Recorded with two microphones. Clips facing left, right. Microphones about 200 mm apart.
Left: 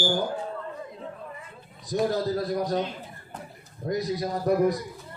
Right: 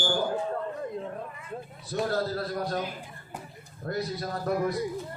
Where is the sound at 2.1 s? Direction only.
15° left (ahead or behind).